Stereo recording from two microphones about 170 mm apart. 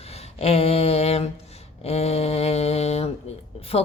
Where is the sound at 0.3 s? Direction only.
35° left (ahead or behind).